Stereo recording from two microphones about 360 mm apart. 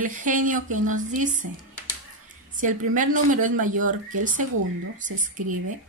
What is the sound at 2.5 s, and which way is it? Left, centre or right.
A woman's voice, right.